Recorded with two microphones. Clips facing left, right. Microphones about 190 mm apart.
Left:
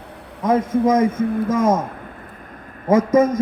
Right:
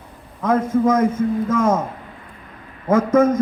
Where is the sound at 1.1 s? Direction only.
55° left (ahead or behind).